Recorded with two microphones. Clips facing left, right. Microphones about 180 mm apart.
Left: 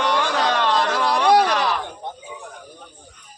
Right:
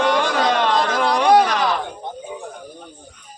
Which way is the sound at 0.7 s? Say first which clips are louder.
Right 2 dB; 20° right (ahead or behind).